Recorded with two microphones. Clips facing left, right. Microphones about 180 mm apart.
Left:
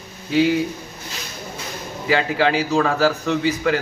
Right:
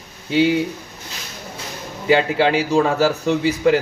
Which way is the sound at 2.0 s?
25° right (ahead or behind).